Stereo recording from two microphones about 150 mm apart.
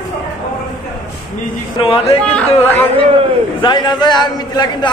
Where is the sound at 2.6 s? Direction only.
15° left (ahead or behind).